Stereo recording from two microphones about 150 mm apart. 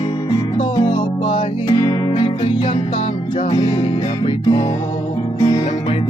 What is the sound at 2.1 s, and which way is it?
Music, 35° left (ahead or behind).